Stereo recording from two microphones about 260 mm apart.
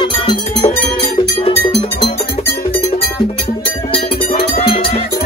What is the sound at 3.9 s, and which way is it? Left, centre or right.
Music, left.